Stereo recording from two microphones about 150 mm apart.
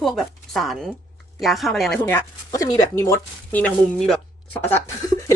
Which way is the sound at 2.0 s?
15° left (ahead or behind).